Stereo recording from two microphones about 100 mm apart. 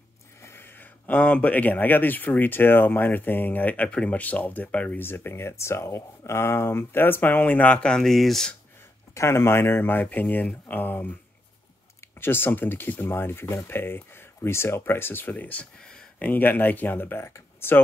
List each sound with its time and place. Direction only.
0.4 s speech: 25° left (ahead or behind); by 8.5 s 5° left (ahead or behind)
9.1 s speech: 25° left (ahead or behind)
12.2 s speech: 20° left (ahead or behind)